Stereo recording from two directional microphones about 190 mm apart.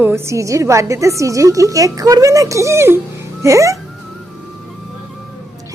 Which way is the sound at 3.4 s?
15° right (ahead or behind).